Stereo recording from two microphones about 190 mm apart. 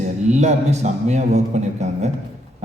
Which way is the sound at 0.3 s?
35° right (ahead or behind).